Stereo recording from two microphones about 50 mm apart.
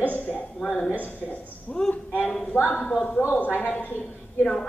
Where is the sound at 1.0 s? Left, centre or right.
Left.